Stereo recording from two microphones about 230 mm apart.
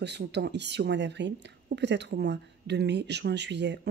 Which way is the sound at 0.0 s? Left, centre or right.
Right.